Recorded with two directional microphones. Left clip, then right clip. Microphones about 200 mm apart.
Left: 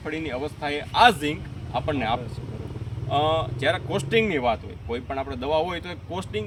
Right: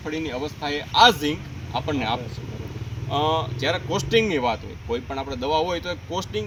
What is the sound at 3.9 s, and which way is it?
Speech, 40° left (ahead or behind).